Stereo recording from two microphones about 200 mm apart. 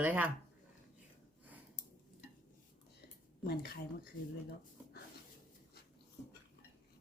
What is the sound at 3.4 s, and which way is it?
Speech, 50° left (ahead or behind).